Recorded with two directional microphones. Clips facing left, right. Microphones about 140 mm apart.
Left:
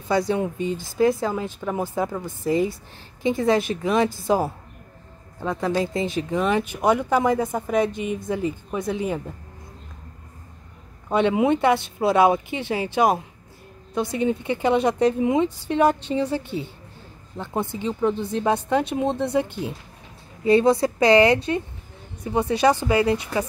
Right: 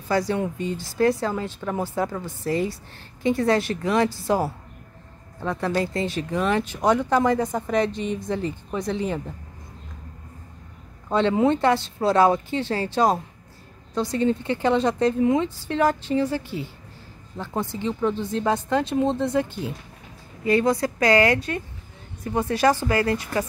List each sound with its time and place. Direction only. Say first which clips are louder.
0.1 s a woman's voice: left 1 dB; 20° left (ahead or behind)
5.4 s a woman's voice: left 1 dB; 15° left (ahead or behind)
11.1 s a woman's voice: even; 15° left (ahead or behind)
20.4 s a woman's voice: left 3 dB; 25° left (ahead or behind)